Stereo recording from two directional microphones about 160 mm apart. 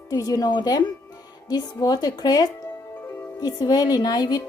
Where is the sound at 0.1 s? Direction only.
20° left (ahead or behind).